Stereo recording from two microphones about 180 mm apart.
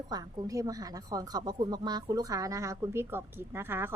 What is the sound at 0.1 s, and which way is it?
A woman's voice, 20° right (ahead or behind).